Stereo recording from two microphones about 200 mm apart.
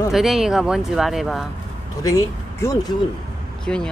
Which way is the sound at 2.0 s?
15° left (ahead or behind).